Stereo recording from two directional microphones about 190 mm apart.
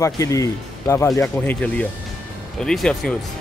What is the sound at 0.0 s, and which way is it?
Speech, 15° left (ahead or behind).